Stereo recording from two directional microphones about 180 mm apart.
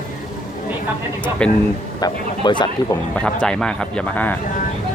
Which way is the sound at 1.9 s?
25° left (ahead or behind).